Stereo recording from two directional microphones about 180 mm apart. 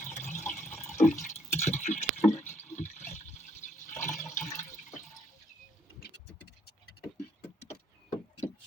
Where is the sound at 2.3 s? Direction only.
10° left (ahead or behind).